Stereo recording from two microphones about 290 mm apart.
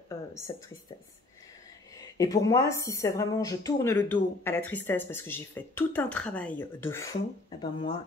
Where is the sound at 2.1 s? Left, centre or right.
Centre.